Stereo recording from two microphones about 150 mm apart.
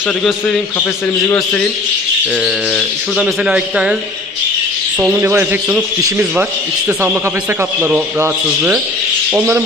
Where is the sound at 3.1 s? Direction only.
5° right (ahead or behind).